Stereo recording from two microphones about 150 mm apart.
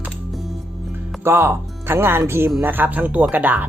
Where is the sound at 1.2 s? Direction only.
15° right (ahead or behind).